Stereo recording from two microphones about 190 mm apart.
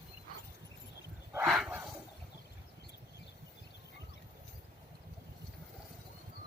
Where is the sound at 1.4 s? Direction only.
Centre (ahead or behind).